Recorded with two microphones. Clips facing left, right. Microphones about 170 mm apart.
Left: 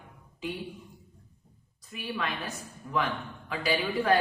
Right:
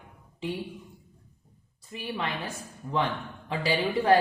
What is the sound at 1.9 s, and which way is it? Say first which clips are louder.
Speech: right 1 dB; 25° right (ahead or behind).